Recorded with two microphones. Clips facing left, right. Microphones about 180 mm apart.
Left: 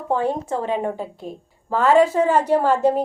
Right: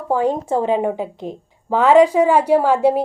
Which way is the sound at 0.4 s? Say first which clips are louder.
Right 5 dB; 30° right (ahead or behind).